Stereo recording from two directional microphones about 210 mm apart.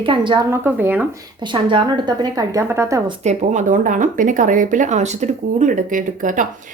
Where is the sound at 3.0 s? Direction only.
30° right (ahead or behind).